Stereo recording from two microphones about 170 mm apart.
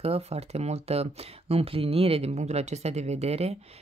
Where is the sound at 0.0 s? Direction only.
35° right (ahead or behind).